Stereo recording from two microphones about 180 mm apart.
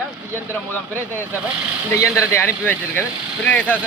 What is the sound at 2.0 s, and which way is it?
Speech, 15° left (ahead or behind).